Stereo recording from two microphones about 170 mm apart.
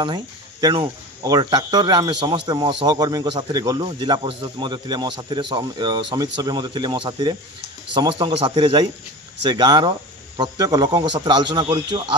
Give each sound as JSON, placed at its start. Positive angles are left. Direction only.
{"t": 0.0, "sound": "speech", "side_deg": -25}